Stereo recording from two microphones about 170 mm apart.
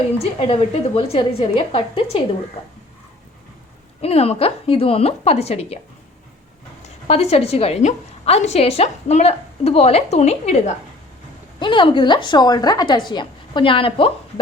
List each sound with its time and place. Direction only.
0.2 s a woman's voice: 35° left (ahead or behind)
4.0 s a woman's voice: 35° left (ahead or behind)
6.8 s a woman's voice: 40° left (ahead or behind)
11.6 s a woman's voice: 30° left (ahead or behind)